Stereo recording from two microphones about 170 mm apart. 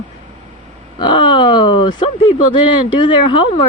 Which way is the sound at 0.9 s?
25° left (ahead or behind).